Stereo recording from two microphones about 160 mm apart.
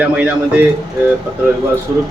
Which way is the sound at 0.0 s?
10° right (ahead or behind).